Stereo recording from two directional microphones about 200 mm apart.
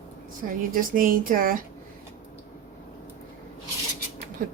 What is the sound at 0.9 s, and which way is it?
Dishes, 45° right (ahead or behind).